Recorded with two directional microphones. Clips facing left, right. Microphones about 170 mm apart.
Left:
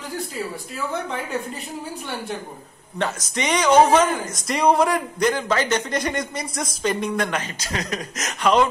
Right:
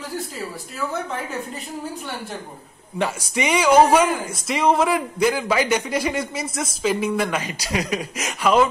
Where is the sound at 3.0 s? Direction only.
10° right (ahead or behind).